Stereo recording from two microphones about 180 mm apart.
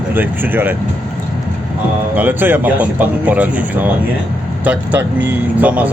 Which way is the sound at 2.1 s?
10° right (ahead or behind).